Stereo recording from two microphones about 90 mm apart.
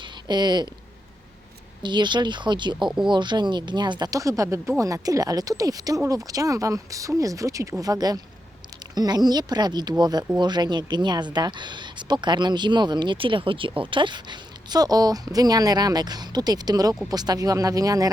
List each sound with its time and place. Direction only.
0.0 s a sound: 55° right (ahead or behind)
1.8 s speech: 60° right (ahead or behind)
4.1 s speech: 35° right (ahead or behind)